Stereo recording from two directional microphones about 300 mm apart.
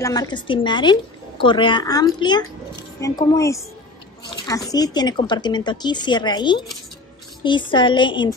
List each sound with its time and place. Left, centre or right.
0.0 s a woman's voice: centre